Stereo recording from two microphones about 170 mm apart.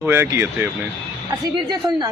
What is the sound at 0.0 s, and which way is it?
A man's voice, 15° right (ahead or behind).